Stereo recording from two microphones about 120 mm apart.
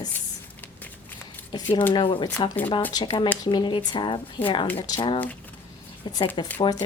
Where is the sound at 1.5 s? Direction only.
45° left (ahead or behind).